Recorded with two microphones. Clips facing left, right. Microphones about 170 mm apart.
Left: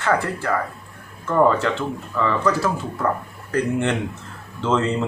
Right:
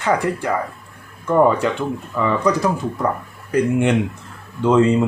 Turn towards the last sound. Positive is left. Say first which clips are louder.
# right 6 dB
turn(degrees=-15)  # may be behind; listen again after turning